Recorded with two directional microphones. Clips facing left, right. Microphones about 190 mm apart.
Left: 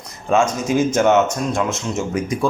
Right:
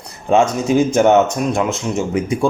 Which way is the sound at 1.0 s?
35° right (ahead or behind).